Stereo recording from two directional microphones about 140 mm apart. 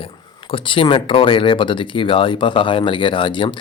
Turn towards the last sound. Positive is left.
turn(degrees=35)  # may be behind; listen again after turning